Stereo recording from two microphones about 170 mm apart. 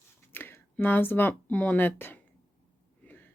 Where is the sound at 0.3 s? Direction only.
15° left (ahead or behind).